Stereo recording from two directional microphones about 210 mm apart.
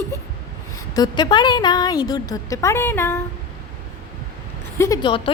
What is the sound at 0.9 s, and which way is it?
A woman's voice, 20° left (ahead or behind).